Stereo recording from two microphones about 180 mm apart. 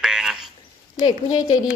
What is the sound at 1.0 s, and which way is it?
Speech, 25° left (ahead or behind).